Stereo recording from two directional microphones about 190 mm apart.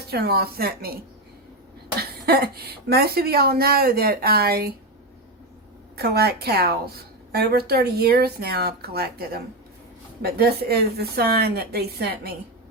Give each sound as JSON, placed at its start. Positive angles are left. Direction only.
{"t": 0.1, "sound": "speech", "side_deg": -55}
{"t": 2.0, "sound": "a woman's voice", "side_deg": -55}
{"t": 6.0, "sound": "a woman's voice", "side_deg": -55}